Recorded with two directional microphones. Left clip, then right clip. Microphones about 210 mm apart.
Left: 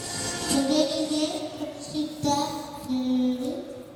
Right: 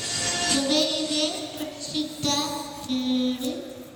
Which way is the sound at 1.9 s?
55° left (ahead or behind).